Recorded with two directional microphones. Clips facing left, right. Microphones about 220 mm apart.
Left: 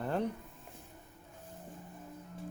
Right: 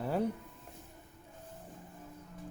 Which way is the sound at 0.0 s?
5° right (ahead or behind).